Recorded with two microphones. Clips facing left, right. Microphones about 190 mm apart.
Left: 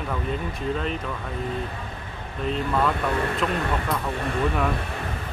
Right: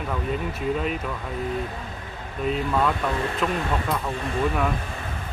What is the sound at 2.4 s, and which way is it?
Speech, 5° right (ahead or behind).